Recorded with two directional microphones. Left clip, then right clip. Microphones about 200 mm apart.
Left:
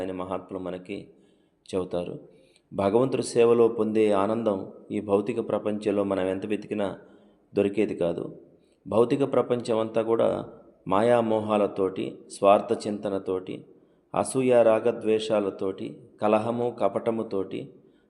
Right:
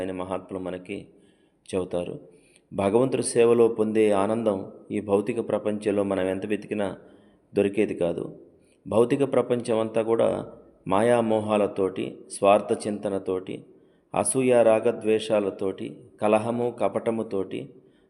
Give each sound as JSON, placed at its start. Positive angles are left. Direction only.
{"t": 0.0, "sound": "speech", "side_deg": -10}